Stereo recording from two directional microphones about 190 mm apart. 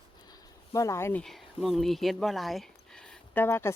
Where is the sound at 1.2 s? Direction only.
Centre (ahead or behind).